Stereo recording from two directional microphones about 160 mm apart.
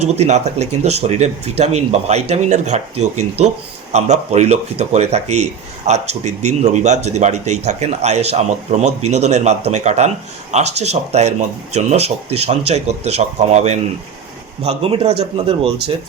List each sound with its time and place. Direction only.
0.0 s speech: 45° right (ahead or behind)